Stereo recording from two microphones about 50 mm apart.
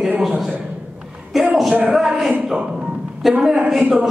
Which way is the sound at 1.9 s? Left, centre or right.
Centre.